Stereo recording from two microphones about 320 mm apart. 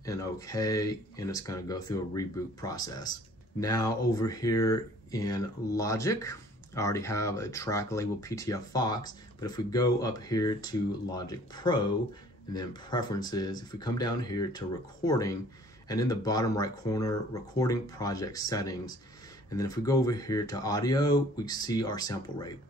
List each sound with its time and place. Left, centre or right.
0.0 s speech: centre